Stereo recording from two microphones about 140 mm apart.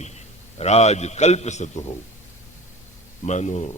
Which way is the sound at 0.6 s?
50° left (ahead or behind).